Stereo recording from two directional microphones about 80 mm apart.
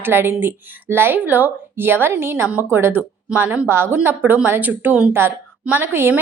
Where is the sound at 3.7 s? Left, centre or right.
Right.